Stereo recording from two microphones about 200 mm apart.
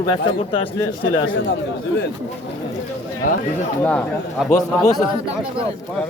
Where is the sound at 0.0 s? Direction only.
25° left (ahead or behind).